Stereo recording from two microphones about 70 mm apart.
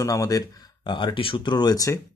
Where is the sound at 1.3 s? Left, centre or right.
Left.